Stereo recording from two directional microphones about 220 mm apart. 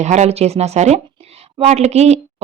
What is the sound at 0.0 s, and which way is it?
Speech, 30° right (ahead or behind).